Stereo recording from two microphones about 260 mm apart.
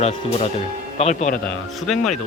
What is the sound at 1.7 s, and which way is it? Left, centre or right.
Speech, centre.